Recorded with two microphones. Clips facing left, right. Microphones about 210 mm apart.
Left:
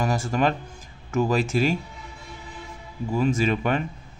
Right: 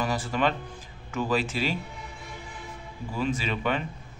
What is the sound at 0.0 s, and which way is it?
Speech, 45° left (ahead or behind).